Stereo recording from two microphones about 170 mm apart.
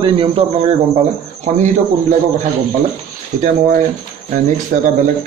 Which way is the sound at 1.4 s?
45° right (ahead or behind).